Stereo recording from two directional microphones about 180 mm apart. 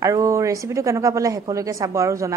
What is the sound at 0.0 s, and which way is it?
Speech, 15° right (ahead or behind).